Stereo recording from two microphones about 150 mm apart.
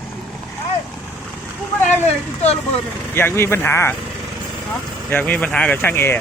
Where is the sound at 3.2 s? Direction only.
15° left (ahead or behind).